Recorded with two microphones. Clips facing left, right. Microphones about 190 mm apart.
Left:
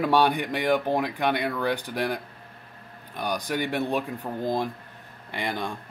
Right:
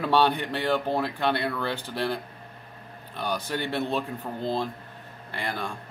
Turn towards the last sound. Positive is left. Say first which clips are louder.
# left 2 dB
turn(degrees=15)  # may be behind; listen again after turning